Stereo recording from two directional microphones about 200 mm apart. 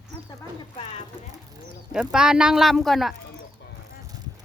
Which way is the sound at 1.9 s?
5° right (ahead or behind).